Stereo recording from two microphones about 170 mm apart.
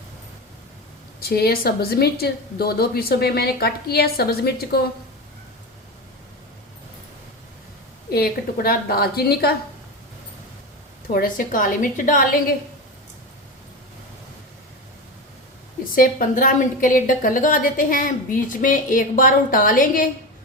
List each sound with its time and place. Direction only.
1.2 s a woman's voice: 65° left (ahead or behind)
8.1 s a woman's voice: 60° left (ahead or behind)
11.1 s a woman's voice: 55° left (ahead or behind)
16.0 s a woman's voice: 55° left (ahead or behind)